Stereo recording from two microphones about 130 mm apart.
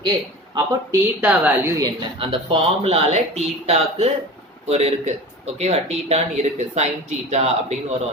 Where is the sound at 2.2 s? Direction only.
45° right (ahead or behind).